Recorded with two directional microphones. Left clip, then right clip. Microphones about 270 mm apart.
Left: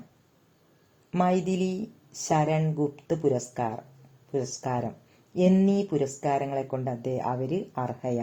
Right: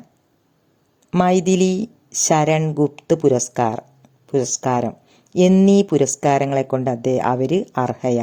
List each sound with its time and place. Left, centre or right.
1.1 s speech: right